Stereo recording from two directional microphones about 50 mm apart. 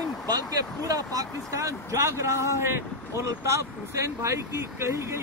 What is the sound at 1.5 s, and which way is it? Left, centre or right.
Speech, right.